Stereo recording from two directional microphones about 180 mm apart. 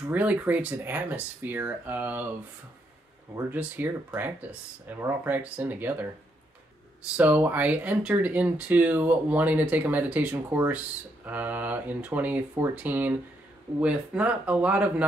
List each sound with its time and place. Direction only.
0.0 s speech: 10° right (ahead or behind)
3.3 s speech: 10° right (ahead or behind)
7.2 s speech: 10° right (ahead or behind)